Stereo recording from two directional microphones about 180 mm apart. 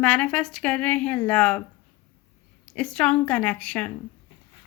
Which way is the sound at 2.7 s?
5° left (ahead or behind).